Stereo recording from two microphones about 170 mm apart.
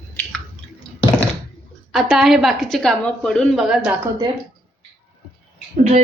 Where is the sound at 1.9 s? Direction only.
Centre (ahead or behind).